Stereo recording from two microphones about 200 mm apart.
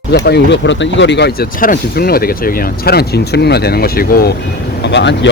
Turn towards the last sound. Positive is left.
turn(degrees=60)  # may be behind; listen again after turning